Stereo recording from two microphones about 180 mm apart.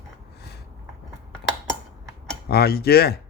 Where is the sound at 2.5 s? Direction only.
60° left (ahead or behind).